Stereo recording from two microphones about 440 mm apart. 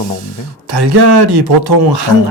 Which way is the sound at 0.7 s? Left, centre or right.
Right.